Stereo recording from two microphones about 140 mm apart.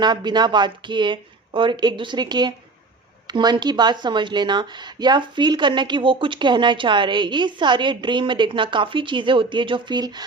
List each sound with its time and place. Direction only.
0.0 s speech: 30° right (ahead or behind)